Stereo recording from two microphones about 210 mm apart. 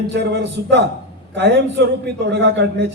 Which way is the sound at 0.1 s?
55° right (ahead or behind).